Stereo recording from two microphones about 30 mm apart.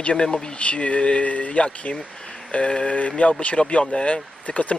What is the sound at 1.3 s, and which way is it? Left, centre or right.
Speech, left.